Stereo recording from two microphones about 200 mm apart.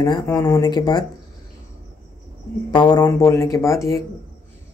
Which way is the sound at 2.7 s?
20° left (ahead or behind).